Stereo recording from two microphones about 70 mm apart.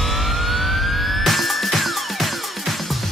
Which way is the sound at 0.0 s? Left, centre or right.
Centre.